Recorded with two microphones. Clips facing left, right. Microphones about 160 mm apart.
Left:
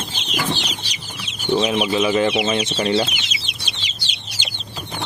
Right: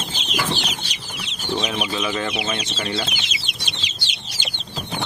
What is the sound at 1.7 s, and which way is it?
Speech, 25° left (ahead or behind).